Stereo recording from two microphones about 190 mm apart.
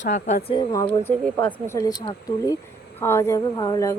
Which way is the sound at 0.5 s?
20° left (ahead or behind).